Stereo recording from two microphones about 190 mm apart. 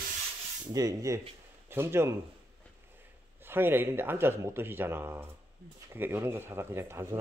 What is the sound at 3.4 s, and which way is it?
Speech, 10° right (ahead or behind).